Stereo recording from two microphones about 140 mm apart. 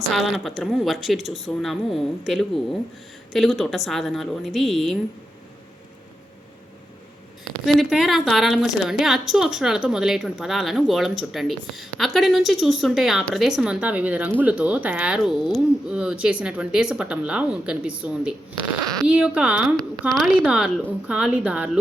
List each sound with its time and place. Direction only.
0.1 s a woman's voice: centre (ahead or behind)
7.6 s a woman's voice: centre (ahead or behind)
19.7 s a woman's voice: 5° left (ahead or behind)